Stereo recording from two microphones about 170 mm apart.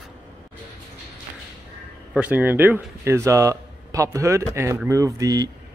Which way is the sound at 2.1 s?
10° right (ahead or behind).